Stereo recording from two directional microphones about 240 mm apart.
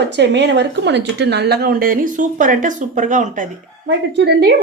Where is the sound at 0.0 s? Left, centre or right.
Right.